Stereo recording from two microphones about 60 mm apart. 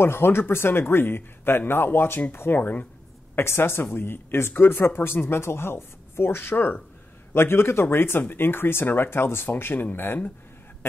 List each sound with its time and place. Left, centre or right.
0.0 s speech: left
3.3 s speech: left
7.3 s speech: left